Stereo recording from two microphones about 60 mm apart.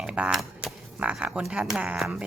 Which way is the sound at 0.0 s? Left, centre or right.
Centre.